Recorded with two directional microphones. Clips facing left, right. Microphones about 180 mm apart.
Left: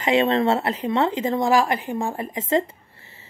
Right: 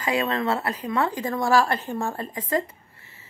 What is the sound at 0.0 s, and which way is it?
Speech, 25° left (ahead or behind).